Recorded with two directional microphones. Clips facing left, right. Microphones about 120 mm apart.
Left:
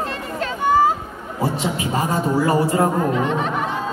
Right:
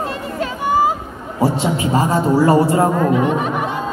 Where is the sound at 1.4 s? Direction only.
30° right (ahead or behind).